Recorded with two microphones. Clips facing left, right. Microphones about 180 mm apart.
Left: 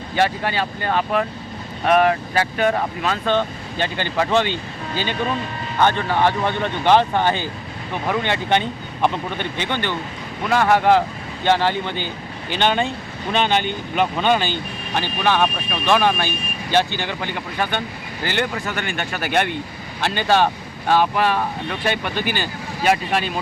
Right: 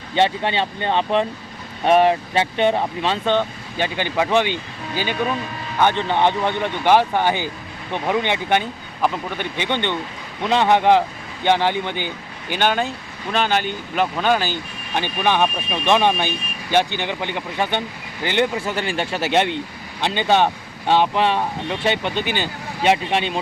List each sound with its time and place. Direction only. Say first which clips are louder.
0.2 s speech: right 1 dB; 25° right (ahead or behind)
3.3 s speech: even; 15° right (ahead or behind)
9.6 s speech: right 3 dB; 20° right (ahead or behind)